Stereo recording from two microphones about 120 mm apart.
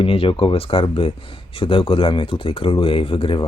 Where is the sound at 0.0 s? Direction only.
50° left (ahead or behind).